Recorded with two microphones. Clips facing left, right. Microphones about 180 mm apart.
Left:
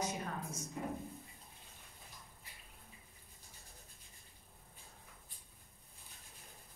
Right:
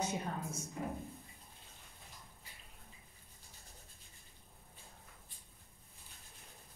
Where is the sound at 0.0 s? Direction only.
30° right (ahead or behind).